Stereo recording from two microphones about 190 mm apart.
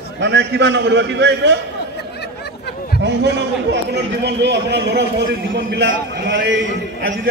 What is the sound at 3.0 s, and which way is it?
A man's voice, 65° right (ahead or behind).